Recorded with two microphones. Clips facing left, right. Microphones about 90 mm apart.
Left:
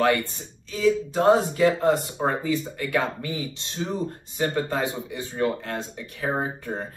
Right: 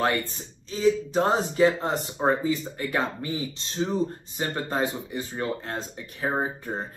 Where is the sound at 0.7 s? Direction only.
30° right (ahead or behind).